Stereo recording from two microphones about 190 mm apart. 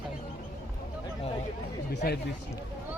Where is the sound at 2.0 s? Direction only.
50° left (ahead or behind).